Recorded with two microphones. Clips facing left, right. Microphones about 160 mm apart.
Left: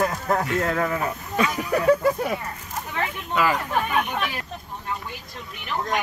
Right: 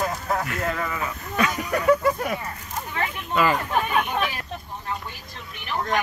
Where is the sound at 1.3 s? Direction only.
25° left (ahead or behind).